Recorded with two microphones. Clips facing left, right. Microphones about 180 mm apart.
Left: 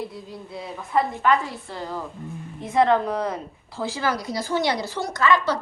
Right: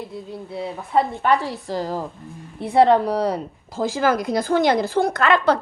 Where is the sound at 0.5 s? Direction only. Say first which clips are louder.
Right 3 dB; 30° right (ahead or behind).